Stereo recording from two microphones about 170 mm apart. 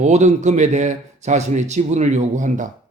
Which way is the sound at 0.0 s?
45° right (ahead or behind).